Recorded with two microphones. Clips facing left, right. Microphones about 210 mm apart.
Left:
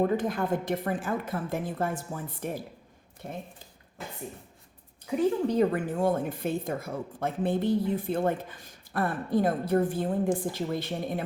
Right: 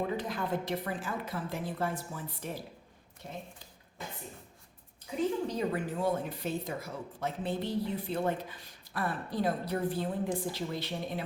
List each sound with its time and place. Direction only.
0.0 s a woman's voice: 50° left (ahead or behind)
5.0 s a woman's voice: 55° left (ahead or behind)